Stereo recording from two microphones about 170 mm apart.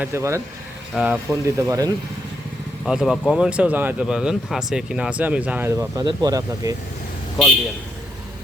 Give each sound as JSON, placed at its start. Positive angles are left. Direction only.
{"t": 0.0, "sound": "speech", "side_deg": -15}
{"t": 2.8, "sound": "speech", "side_deg": -5}